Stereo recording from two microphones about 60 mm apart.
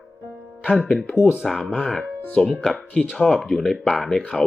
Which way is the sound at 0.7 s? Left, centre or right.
Centre.